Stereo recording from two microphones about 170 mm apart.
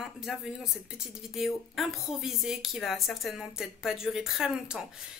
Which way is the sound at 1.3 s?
Centre (ahead or behind).